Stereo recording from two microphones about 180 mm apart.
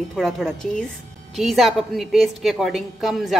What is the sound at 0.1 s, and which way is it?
A woman's voice, centre (ahead or behind).